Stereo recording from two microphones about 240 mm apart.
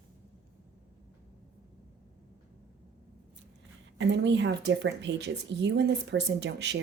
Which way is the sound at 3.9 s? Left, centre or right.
Right.